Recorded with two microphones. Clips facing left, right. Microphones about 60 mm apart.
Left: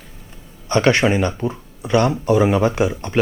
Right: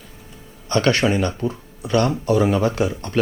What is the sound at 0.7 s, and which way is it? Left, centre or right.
Speech, left.